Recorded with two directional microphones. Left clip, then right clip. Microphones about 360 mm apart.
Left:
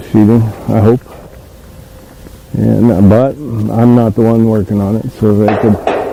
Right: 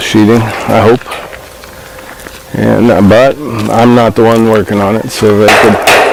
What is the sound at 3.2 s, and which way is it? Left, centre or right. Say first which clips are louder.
Speech: right 7 dB; centre.